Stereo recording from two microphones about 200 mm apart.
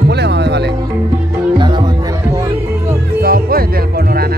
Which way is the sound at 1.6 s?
20° right (ahead or behind).